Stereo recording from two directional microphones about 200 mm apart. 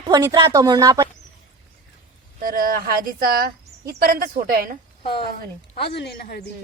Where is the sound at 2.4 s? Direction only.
45° right (ahead or behind).